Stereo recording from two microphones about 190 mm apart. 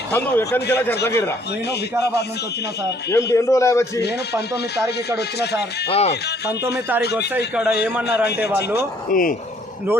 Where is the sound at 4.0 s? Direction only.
60° left (ahead or behind).